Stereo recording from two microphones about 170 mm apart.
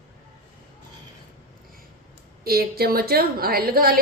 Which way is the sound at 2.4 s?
65° right (ahead or behind).